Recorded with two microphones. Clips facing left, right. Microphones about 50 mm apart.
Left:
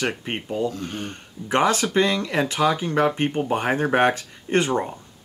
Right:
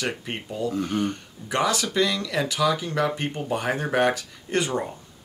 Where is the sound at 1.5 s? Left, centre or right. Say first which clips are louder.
Left 4 dB; left.